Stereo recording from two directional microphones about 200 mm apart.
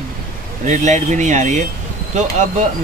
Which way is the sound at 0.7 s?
35° right (ahead or behind).